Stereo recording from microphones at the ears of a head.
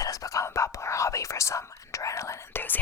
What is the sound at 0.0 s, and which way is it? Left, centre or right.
Whispering, left.